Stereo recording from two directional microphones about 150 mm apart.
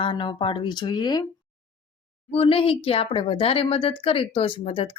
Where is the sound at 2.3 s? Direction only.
40° left (ahead or behind).